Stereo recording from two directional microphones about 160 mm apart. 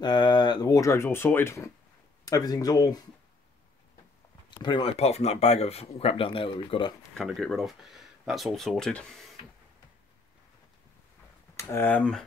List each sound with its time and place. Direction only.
0.0 s speech: 30° left (ahead or behind)
4.5 s speech: 30° left (ahead or behind)
7.2 s speech: 5° left (ahead or behind)
11.5 s speech: 15° left (ahead or behind)